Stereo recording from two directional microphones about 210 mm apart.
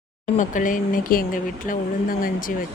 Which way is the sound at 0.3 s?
40° left (ahead or behind).